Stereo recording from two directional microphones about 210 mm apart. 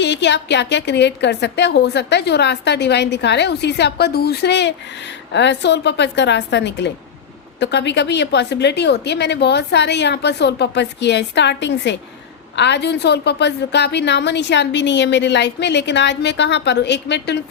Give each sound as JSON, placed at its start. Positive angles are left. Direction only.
{"t": 0.0, "sound": "a woman's voice", "side_deg": 55}